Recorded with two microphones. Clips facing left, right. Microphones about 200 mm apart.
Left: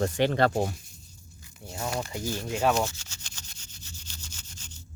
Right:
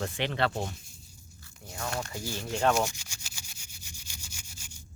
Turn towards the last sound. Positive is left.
turn(degrees=-10)  # may be behind; listen again after turning